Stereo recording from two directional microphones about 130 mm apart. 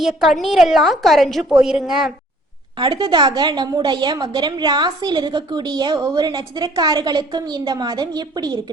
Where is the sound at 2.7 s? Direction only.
35° right (ahead or behind).